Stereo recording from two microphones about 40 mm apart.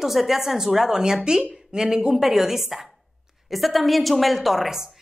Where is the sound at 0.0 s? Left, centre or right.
Centre.